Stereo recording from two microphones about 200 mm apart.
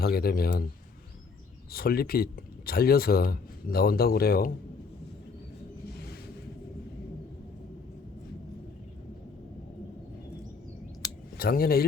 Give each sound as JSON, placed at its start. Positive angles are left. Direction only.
{"t": 0.0, "sound": "speech", "side_deg": 50}
{"t": 1.7, "sound": "speech", "side_deg": 50}
{"t": 11.3, "sound": "speech", "side_deg": 50}